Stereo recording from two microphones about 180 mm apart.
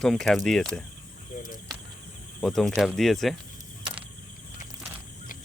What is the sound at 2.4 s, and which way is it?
Speech, centre (ahead or behind).